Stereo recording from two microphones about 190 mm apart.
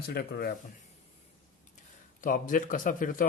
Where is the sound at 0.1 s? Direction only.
55° left (ahead or behind).